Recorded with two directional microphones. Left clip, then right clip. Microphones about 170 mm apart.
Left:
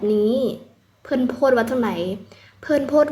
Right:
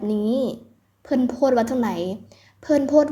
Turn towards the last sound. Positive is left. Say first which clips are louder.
# even
turn(degrees=-30)  # may be behind; listen again after turning